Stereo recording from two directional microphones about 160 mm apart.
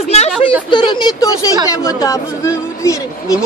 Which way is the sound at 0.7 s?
30° left (ahead or behind).